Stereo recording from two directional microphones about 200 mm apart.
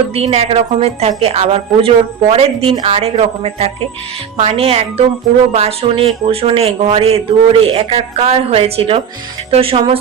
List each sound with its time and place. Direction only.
0.1 s a woman's voice: 30° right (ahead or behind)